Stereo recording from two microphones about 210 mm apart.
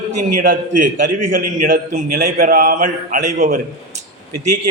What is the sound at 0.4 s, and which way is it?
A man's voice, 40° right (ahead or behind).